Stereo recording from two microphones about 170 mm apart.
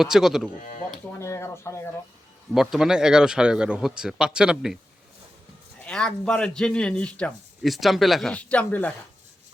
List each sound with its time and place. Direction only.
0.0 s speech: 5° right (ahead or behind)
1.2 s speech: 15° left (ahead or behind)
2.5 s speech: centre (ahead or behind)
5.8 s speech: 5° left (ahead or behind)